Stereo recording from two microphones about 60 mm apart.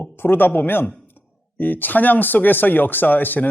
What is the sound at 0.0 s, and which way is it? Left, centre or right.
Speech, left.